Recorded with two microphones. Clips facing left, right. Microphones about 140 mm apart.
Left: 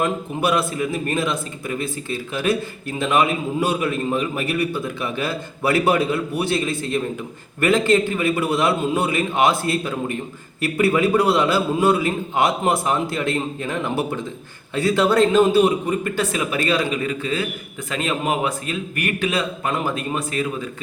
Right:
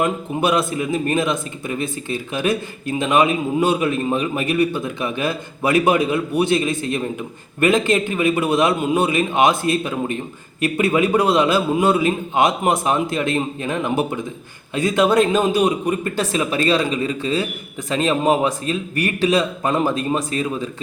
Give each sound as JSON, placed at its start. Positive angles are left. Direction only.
{"t": 0.0, "sound": "a man's voice", "side_deg": -20}